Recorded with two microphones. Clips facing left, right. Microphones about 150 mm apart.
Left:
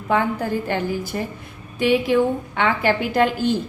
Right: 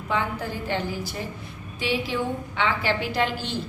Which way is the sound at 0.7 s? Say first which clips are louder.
Left 5 dB; 50° left (ahead or behind).